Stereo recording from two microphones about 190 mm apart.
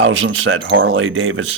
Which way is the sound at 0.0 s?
90° right.